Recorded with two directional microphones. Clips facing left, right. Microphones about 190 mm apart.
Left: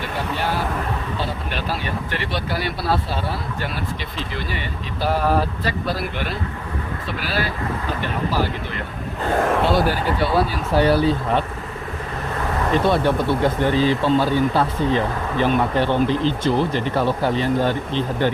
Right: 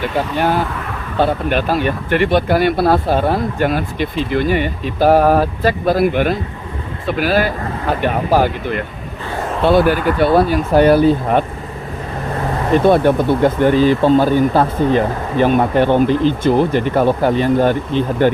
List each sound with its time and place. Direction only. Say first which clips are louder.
0.2 s speech: right 7 dB; 55° right (ahead or behind)
9.2 s speech: left 3 dB; 60° left (ahead or behind)
9.6 s speech: right 7 dB; 55° right (ahead or behind)
12.8 s speech: right 8 dB; 50° right (ahead or behind)